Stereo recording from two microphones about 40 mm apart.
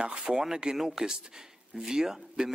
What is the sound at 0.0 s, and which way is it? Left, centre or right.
Speech, right.